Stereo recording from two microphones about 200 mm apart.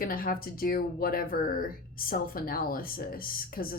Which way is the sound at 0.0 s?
45° left (ahead or behind).